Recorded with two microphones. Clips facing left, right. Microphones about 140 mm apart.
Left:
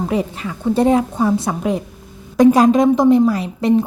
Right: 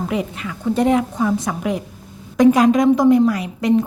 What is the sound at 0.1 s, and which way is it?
A woman's voice, 35° left (ahead or behind).